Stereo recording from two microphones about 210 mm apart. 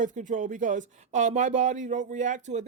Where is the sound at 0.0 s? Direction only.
35° right (ahead or behind).